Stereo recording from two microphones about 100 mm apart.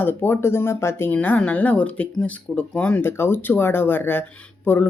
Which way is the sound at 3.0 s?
25° left (ahead or behind).